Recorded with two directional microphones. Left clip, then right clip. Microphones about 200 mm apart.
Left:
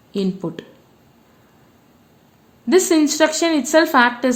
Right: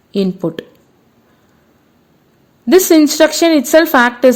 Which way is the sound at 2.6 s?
40° right (ahead or behind).